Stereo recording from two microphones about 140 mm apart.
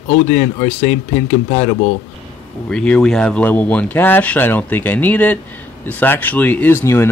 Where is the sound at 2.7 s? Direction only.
5° left (ahead or behind).